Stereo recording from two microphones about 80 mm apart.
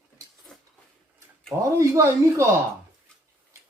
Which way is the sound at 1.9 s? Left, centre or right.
Right.